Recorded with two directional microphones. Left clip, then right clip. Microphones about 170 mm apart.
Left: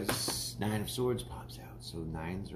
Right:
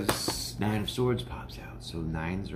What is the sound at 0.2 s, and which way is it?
Speech, 20° left (ahead or behind).